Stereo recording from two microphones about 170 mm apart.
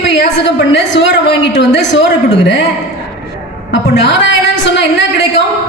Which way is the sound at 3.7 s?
90° left.